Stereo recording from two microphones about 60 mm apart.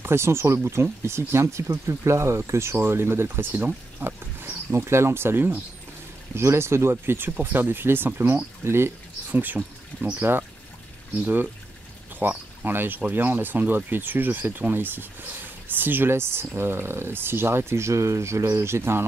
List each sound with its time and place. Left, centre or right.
0.0 s speech: right
9.3 s speech: right
10.2 s speech: right
12.2 s speech: right